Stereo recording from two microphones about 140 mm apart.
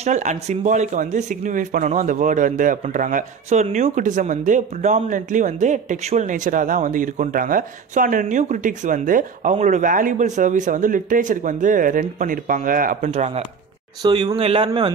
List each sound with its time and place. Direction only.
0.0 s speech: 60° right (ahead or behind); by 13.1 s 80° right
13.1 s speech: 50° right (ahead or behind)
14.0 s a man's voice: 35° right (ahead or behind)